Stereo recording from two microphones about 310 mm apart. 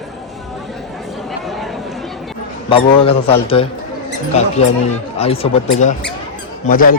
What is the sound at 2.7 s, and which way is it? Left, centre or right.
A man's voice, centre.